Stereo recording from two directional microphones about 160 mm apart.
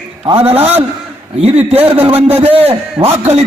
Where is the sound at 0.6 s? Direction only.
40° right (ahead or behind).